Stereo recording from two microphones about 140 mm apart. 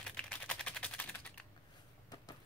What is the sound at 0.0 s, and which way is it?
Typing, 5° left (ahead or behind).